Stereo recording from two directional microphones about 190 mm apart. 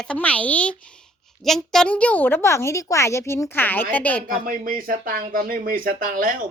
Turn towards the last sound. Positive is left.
turn(degrees=-45)  # may be behind; listen again after turning